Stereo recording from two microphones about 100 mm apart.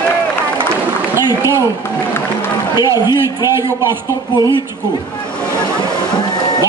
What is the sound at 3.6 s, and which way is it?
Speech, 25° right (ahead or behind).